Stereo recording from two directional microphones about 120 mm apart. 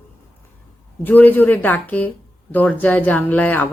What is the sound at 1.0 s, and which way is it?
Speech, 15° left (ahead or behind).